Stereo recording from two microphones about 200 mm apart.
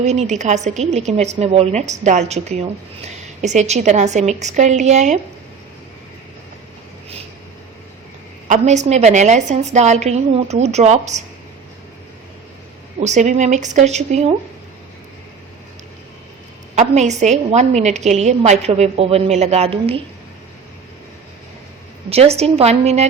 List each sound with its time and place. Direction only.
0.0 s a woman's voice: 35° right (ahead or behind)
8.4 s a woman's voice: 35° right (ahead or behind)
13.0 s a woman's voice: 35° right (ahead or behind)
16.7 s a woman's voice: 35° right (ahead or behind)
22.1 s a woman's voice: 30° right (ahead or behind)